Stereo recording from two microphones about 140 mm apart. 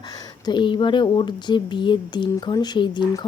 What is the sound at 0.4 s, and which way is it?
Speech, 35° left (ahead or behind).